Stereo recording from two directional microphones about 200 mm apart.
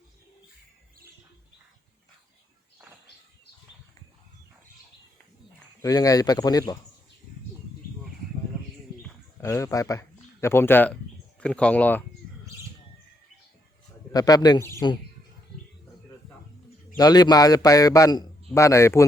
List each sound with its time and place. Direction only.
5.8 s speech: 15° left (ahead or behind)
9.4 s speech: 15° left (ahead or behind)
14.1 s a man's voice: 20° left (ahead or behind)
17.0 s a man's voice: 20° left (ahead or behind)